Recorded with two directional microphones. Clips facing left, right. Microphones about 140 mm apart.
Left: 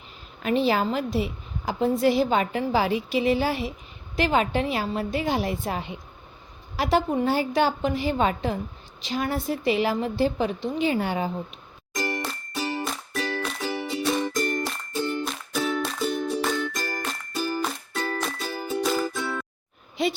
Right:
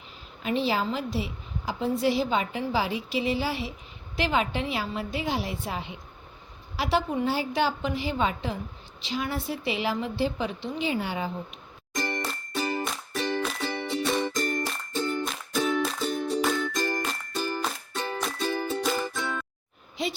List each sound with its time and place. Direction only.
0.4 s a woman's voice: 50° left (ahead or behind)
12.0 s music: 5° left (ahead or behind)